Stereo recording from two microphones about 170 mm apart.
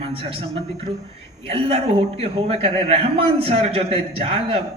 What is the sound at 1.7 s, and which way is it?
A man's voice, 35° right (ahead or behind).